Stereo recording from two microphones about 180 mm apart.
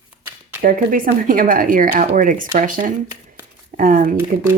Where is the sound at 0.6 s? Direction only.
50° right (ahead or behind).